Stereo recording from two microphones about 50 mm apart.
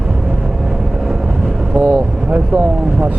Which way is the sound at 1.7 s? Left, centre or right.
Right.